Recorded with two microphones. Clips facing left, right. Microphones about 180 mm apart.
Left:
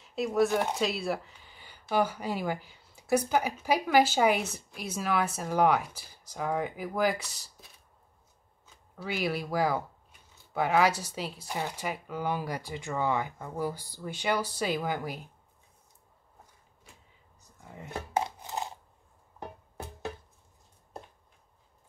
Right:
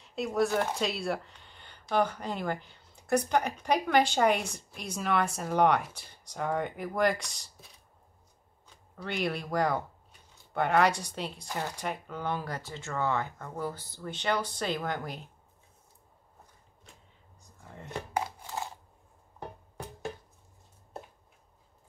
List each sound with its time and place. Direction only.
0.0 s speech: centre (ahead or behind)
0.5 s speech: 15° left (ahead or behind)
0.7 s speech: centre (ahead or behind)
8.6 s speech: 5° left (ahead or behind)
17.4 s a sound: 5° left (ahead or behind)
18.1 s a sound: 20° left (ahead or behind)